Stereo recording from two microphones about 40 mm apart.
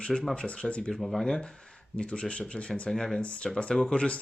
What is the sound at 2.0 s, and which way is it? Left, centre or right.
Speech, left.